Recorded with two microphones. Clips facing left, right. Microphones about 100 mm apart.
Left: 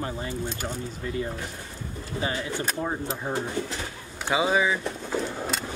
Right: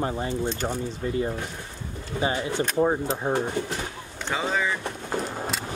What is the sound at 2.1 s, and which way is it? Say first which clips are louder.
Speech: right 4 dB; 65° right (ahead or behind).